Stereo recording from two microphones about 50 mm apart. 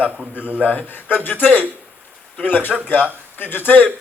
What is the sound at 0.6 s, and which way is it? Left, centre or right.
A man's voice, left.